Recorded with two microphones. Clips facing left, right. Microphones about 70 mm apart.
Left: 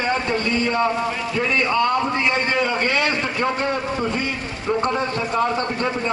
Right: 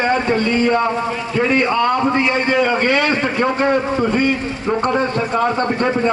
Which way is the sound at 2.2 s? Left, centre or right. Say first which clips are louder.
Right 4 dB; right.